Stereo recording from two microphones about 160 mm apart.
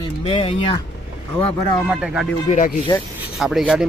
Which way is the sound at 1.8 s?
5° right (ahead or behind).